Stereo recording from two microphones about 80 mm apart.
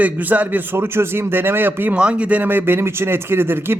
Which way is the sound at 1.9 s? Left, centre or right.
Centre.